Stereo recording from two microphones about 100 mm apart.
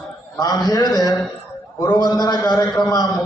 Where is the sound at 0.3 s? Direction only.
40° left (ahead or behind).